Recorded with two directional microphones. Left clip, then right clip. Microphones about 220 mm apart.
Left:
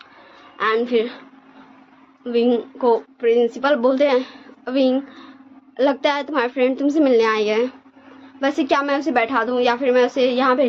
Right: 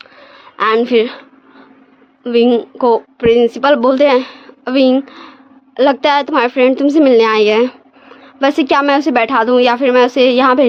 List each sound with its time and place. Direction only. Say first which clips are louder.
0.5 s a woman's voice: right 7 dB; 50° right (ahead or behind)
2.2 s a woman's voice: right 7 dB; 50° right (ahead or behind)